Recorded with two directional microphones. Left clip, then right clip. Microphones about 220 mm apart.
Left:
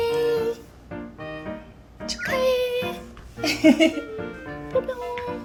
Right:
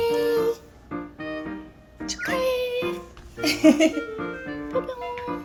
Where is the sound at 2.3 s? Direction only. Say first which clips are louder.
Left 3 dB; 10° right (ahead or behind).